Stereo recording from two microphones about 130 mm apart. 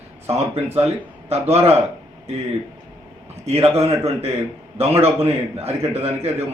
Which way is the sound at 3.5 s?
55° right (ahead or behind).